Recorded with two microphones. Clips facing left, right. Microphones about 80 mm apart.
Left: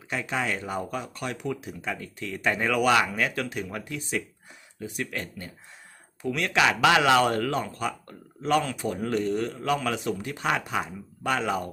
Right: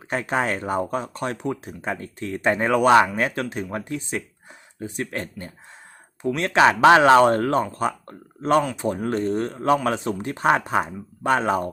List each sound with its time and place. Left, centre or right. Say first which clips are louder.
0.1 s speech: right 5 dB; right